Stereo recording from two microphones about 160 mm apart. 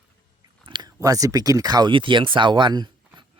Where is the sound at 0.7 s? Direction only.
25° right (ahead or behind).